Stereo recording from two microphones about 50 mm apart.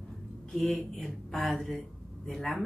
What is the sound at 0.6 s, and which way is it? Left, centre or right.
A woman's voice, centre.